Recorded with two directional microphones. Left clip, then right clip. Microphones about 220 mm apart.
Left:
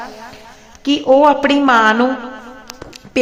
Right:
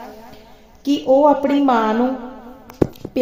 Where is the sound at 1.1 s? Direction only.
20° left (ahead or behind).